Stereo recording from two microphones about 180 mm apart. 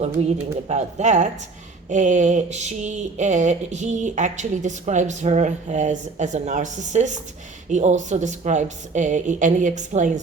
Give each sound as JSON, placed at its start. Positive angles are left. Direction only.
{"t": 0.0, "sound": "speech", "side_deg": -35}